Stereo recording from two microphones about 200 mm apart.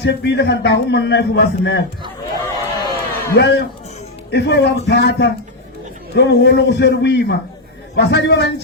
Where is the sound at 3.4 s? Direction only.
55° left (ahead or behind).